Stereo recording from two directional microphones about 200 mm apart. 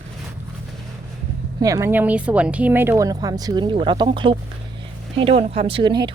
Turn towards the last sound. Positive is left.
turn(degrees=-25)  # may be behind; listen again after turning